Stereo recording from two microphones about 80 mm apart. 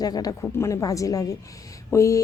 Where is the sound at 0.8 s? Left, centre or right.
Left.